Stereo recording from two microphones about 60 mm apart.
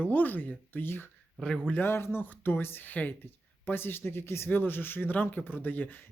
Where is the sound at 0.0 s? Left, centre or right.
Left.